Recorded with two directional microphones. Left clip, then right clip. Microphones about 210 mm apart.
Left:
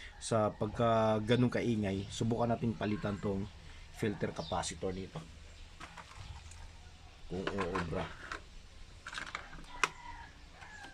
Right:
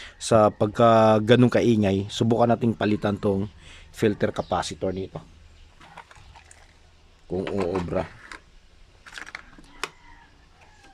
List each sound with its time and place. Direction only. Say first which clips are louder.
0.0 s speech: right 14 dB; 55° right (ahead or behind)
7.5 s speech: right 11 dB; 40° right (ahead or behind)
9.3 s a sound: right 4 dB; 25° right (ahead or behind)